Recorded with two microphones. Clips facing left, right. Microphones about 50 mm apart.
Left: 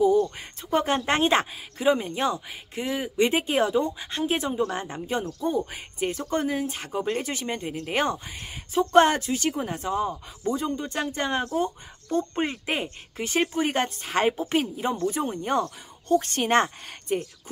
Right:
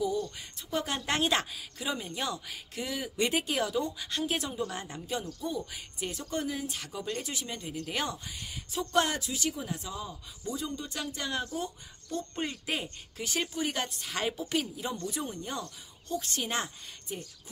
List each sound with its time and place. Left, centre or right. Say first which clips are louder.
0.4 s a woman's voice: left 8 dB; left